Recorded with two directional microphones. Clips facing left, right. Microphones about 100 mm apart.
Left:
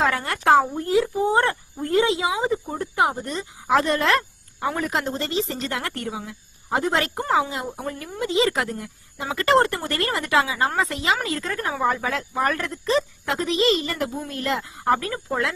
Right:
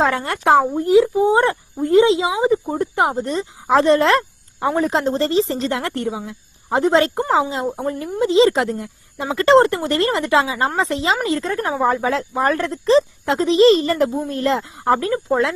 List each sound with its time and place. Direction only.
0.0 s speech: 25° right (ahead or behind)